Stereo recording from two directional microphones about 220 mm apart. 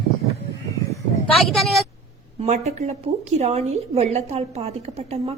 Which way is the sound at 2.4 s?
30° right (ahead or behind).